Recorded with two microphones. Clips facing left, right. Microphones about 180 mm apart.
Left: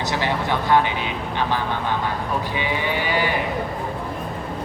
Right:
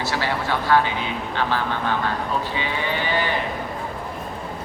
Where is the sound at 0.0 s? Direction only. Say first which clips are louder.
Left 1 dB; 20° left (ahead or behind).